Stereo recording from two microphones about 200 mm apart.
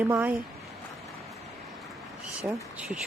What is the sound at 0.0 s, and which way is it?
Speech, 10° right (ahead or behind).